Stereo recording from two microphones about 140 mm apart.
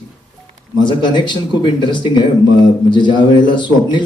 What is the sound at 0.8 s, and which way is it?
A man's voice, 35° left (ahead or behind).